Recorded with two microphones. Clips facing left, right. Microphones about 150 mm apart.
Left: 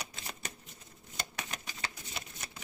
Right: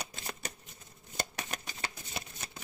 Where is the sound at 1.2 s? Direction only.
40° right (ahead or behind).